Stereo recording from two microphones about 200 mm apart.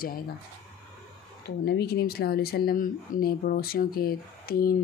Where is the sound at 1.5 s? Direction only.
55° left (ahead or behind).